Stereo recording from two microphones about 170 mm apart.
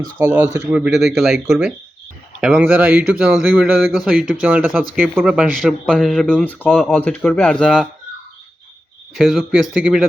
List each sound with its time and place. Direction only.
0.2 s speech: 15° right (ahead or behind)
9.1 s speech: centre (ahead or behind)